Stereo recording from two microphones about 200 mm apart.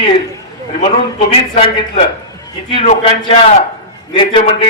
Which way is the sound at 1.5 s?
30° left (ahead or behind).